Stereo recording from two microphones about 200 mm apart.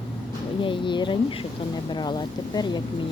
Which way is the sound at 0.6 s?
25° left (ahead or behind).